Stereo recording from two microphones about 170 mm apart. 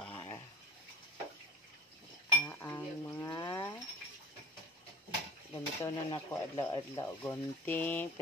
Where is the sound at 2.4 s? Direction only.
10° left (ahead or behind).